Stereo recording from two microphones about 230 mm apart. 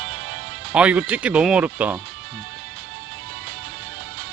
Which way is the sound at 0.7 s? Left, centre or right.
Centre.